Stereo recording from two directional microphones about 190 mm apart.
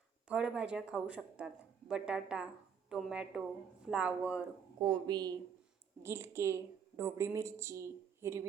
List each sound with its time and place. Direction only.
0.3 s a woman's voice: 5° right (ahead or behind)
4.8 s a woman's voice: 25° right (ahead or behind)